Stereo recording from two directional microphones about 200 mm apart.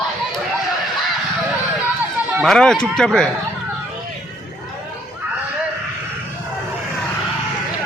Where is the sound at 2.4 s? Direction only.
Centre (ahead or behind).